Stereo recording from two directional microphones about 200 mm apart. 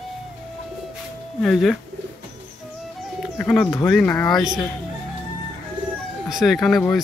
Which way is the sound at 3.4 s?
5° left (ahead or behind).